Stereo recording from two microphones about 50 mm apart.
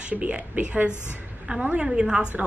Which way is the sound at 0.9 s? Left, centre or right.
Left.